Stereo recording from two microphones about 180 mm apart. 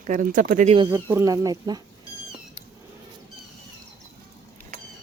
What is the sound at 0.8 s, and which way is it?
Speech, 15° right (ahead or behind).